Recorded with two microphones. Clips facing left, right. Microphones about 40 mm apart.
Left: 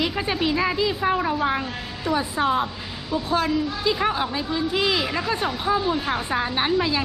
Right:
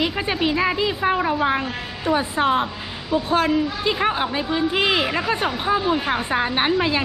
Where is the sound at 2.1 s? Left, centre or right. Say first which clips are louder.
Right 3 dB; right.